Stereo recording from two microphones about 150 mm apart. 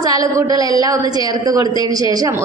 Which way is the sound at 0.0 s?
25° right (ahead or behind).